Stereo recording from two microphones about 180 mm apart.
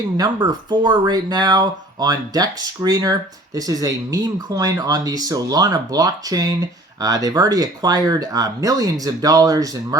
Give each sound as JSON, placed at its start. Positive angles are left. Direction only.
{"t": 0.2, "sound": "speech", "side_deg": -20}